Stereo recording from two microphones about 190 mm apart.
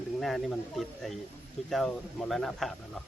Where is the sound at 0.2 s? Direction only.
Centre (ahead or behind).